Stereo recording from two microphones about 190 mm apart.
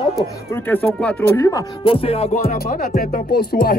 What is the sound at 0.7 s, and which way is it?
Speech, 5° left (ahead or behind).